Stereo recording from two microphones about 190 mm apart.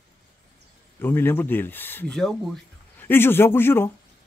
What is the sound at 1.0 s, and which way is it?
Speech, 10° left (ahead or behind).